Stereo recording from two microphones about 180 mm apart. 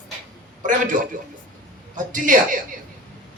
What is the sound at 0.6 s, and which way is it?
Speech, 45° right (ahead or behind).